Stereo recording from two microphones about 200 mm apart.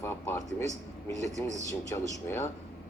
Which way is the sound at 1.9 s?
15° left (ahead or behind).